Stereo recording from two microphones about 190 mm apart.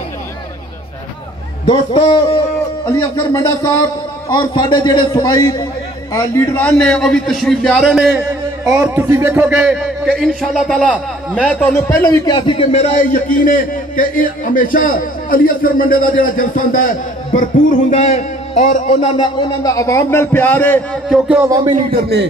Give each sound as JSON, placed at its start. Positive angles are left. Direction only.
{"t": 1.7, "sound": "a man's voice", "side_deg": 25}
{"t": 4.3, "sound": "a man's voice", "side_deg": 20}
{"t": 19.1, "sound": "a man's voice", "side_deg": 25}
{"t": 21.1, "sound": "speech", "side_deg": -5}
{"t": 21.5, "sound": "speech", "side_deg": -20}
{"t": 21.9, "sound": "speech", "side_deg": -60}